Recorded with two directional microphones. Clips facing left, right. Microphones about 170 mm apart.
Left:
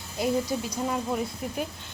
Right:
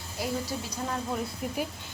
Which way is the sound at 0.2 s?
20° left (ahead or behind).